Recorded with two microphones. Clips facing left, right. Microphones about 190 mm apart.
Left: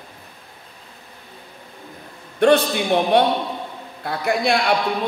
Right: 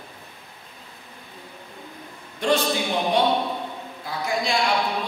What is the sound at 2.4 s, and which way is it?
Speech, 60° left (ahead or behind).